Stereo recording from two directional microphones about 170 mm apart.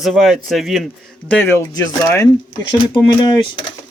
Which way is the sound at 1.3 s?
10° left (ahead or behind).